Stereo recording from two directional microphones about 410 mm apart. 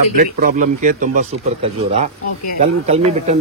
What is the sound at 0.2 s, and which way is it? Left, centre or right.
Speech, centre.